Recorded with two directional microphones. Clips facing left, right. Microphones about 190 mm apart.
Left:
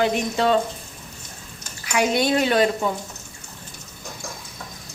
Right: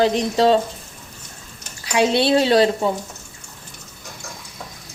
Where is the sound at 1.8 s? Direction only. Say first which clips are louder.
Right 3 dB; 30° right (ahead or behind).